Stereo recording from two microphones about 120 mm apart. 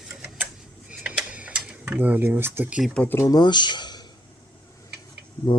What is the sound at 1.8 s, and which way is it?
Speech, 15° right (ahead or behind).